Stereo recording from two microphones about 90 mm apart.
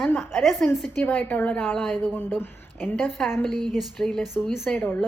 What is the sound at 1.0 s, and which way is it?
A woman's voice, 20° left (ahead or behind).